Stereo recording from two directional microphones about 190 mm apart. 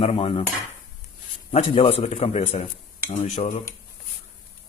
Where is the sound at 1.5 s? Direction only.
30° left (ahead or behind).